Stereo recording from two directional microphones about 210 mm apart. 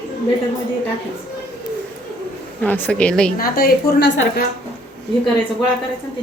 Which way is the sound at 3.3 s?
45° left (ahead or behind).